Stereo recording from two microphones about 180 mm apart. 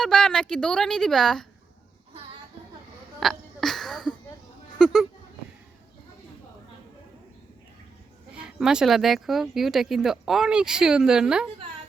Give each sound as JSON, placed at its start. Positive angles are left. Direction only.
{"t": 0.0, "sound": "speech", "side_deg": 5}
{"t": 3.2, "sound": "a sound", "side_deg": 0}
{"t": 4.8, "sound": "speech", "side_deg": 0}
{"t": 8.3, "sound": "speech", "side_deg": -5}